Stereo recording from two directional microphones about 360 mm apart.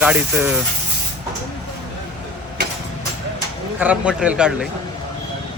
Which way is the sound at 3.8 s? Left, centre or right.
Centre.